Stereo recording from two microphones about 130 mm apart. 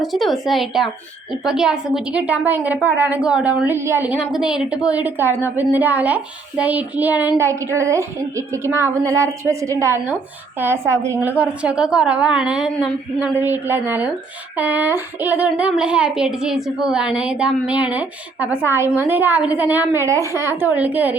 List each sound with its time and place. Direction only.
0.0 s a woman's voice: centre (ahead or behind)